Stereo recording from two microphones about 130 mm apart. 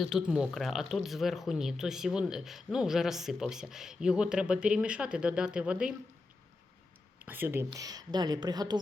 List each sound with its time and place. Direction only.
0.0 s speech: 5° right (ahead or behind)
7.3 s a woman's voice: 15° right (ahead or behind); by 8.8 s 30° right (ahead or behind)